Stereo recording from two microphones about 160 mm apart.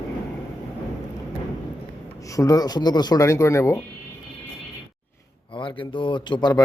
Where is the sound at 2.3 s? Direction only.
20° left (ahead or behind).